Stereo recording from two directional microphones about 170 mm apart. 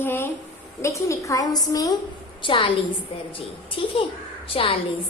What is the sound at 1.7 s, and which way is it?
Child singing, 20° left (ahead or behind).